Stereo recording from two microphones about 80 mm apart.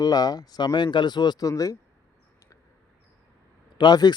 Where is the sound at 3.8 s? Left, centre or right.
Left.